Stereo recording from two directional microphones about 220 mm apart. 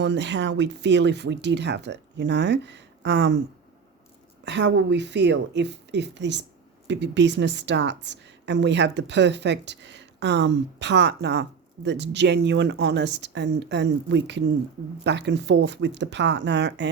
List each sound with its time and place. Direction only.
0.0 s speech: 50° right (ahead or behind)
4.4 s speech: 55° right (ahead or behind)